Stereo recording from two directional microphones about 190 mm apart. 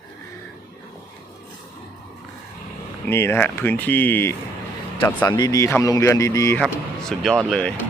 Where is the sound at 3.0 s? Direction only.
15° left (ahead or behind).